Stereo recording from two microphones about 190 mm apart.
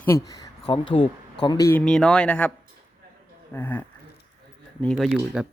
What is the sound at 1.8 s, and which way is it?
Speech, 5° left (ahead or behind).